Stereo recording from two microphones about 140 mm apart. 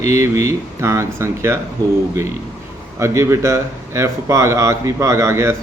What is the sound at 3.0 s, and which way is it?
Speech, 20° right (ahead or behind).